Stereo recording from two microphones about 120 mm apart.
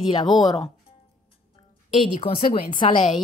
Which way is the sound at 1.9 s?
50° left (ahead or behind).